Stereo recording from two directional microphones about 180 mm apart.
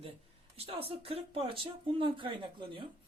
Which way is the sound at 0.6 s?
35° right (ahead or behind).